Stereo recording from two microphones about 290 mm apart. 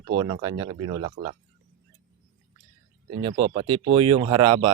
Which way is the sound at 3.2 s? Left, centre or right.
Centre.